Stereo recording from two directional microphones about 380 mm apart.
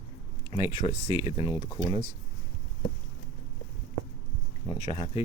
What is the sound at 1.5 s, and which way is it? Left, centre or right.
Speech, centre.